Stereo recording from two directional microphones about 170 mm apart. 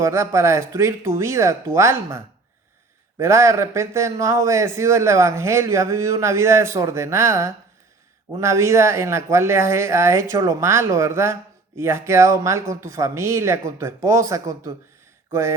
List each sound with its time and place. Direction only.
0.0 s speech: 15° right (ahead or behind)